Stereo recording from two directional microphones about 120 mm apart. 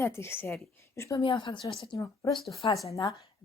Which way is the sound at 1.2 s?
45° left (ahead or behind).